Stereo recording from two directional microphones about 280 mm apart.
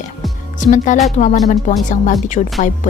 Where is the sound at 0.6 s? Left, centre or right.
Left.